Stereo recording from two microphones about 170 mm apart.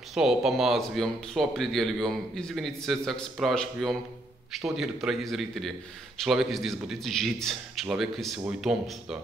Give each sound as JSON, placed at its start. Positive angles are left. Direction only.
{"t": 0.1, "sound": "speech", "side_deg": 0}